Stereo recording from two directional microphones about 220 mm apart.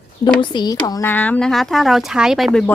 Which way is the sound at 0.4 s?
20° left (ahead or behind).